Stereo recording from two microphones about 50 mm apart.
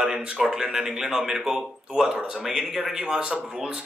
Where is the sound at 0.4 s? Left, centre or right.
Centre.